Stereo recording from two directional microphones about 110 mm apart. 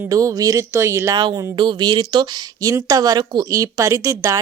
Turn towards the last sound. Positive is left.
turn(degrees=-30)  # may be behind; listen again after turning